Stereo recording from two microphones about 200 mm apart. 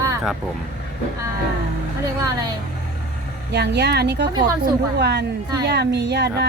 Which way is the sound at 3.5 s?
55° right (ahead or behind).